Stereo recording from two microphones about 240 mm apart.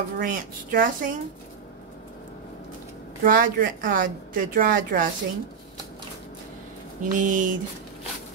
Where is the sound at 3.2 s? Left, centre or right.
Right.